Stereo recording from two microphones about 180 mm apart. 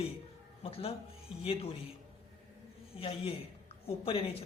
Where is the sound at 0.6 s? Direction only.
30° left (ahead or behind).